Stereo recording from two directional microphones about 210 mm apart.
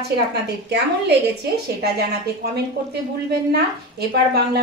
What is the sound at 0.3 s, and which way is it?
A woman's voice, 50° right (ahead or behind).